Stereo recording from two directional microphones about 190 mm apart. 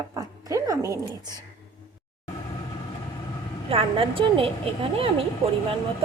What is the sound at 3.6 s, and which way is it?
A woman's voice, 30° right (ahead or behind).